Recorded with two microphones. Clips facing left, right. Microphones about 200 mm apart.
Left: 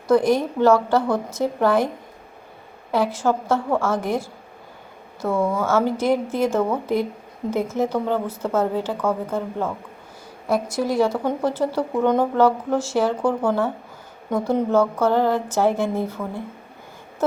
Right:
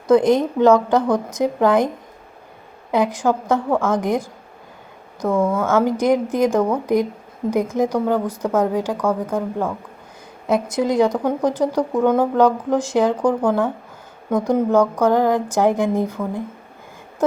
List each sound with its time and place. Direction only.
0.1 s speech: 20° right (ahead or behind)
2.9 s speech: 15° right (ahead or behind)
5.4 s speech: centre (ahead or behind)
5.6 s speech: 15° right (ahead or behind)
10.5 s speech: 20° right (ahead or behind)
12.4 s speech: 15° right (ahead or behind)